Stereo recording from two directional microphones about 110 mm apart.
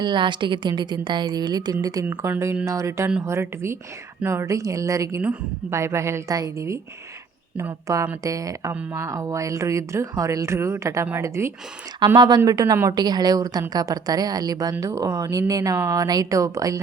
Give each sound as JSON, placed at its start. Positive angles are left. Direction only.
{"t": 0.0, "sound": "a woman's voice", "side_deg": -45}
{"t": 11.9, "sound": "a woman's voice", "side_deg": -40}
{"t": 12.9, "sound": "a woman's voice", "side_deg": -40}